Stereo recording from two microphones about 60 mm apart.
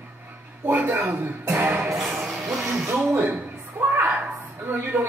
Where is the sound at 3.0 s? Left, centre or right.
Right.